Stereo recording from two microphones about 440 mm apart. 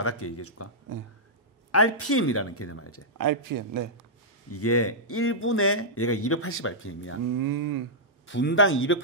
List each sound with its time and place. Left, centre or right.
0.0 s speech: left
1.7 s speech: left
3.2 s speech: right
4.5 s speech: left
7.3 s speech: right
8.3 s speech: left